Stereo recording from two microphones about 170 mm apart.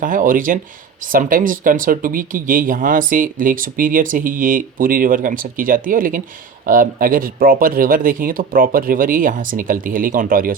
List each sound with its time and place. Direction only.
0.0 s speech: 50° right (ahead or behind)